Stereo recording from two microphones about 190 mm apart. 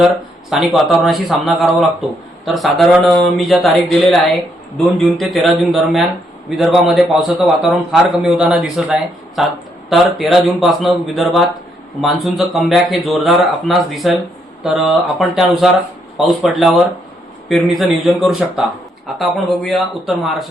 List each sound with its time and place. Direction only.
0.5 s speech: centre (ahead or behind)